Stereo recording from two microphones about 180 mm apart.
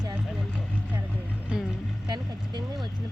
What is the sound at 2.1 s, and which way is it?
Vehicle, 25° right (ahead or behind).